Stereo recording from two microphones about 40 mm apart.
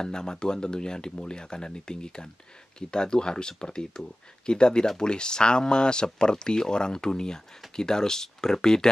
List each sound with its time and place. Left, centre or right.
0.0 s speech: centre